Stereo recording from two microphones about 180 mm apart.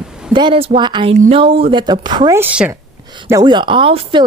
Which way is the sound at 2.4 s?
10° right (ahead or behind).